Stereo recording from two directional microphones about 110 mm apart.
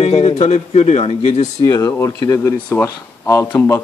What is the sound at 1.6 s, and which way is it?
A man's voice, 35° left (ahead or behind).